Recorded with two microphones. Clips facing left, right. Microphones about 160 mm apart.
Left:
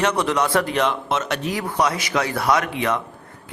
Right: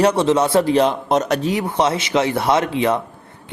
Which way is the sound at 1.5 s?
25° right (ahead or behind).